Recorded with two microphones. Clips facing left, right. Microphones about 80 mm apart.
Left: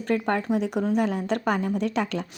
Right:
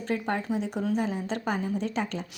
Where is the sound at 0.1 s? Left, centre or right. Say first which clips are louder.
Left 5 dB; left.